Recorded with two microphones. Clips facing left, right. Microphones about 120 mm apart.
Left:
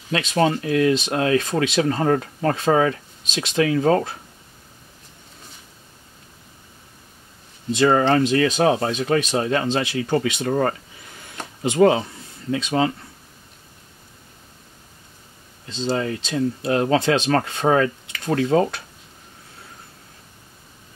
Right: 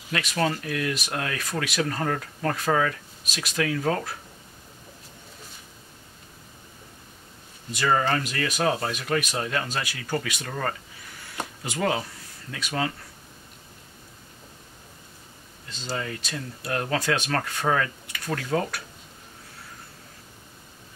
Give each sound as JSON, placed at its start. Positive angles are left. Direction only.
{"t": 0.1, "sound": "speech", "side_deg": 25}
{"t": 7.7, "sound": "speech", "side_deg": 25}
{"t": 10.5, "sound": "speech", "side_deg": 35}
{"t": 11.1, "sound": "a sound", "side_deg": 20}
{"t": 11.6, "sound": "speech", "side_deg": 25}
{"t": 15.7, "sound": "speech", "side_deg": 25}